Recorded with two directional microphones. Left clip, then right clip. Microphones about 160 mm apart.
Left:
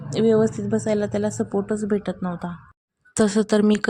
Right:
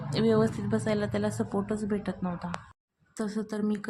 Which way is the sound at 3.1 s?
55° left (ahead or behind).